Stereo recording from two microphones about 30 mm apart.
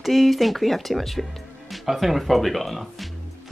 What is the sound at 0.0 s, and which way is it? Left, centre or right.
A woman's voice, centre.